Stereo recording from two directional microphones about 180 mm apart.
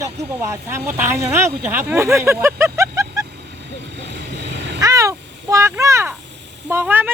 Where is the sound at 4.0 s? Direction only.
75° right (ahead or behind).